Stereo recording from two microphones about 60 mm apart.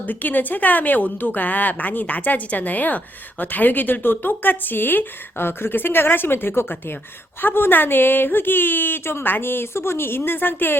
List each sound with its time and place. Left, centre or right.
0.0 s a woman's voice: left